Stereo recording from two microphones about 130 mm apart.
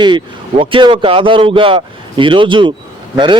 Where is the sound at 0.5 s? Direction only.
45° right (ahead or behind).